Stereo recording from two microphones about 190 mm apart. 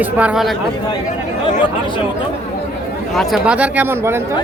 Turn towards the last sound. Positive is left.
turn(degrees=-10)  # may be behind; listen again after turning